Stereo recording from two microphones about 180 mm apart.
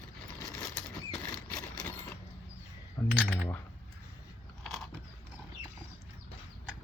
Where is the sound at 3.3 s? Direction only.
10° left (ahead or behind).